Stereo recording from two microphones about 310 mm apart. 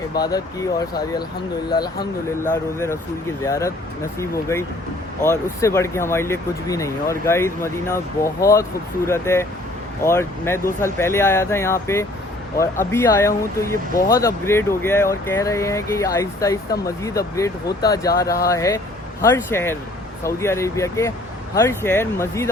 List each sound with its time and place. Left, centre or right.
0.1 s speech: centre
2.0 s speech: left
2.7 s speech: centre